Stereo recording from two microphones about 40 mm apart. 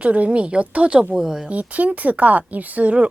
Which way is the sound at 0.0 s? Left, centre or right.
Right.